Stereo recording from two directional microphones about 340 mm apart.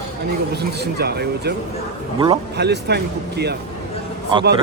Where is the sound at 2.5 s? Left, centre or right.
Right.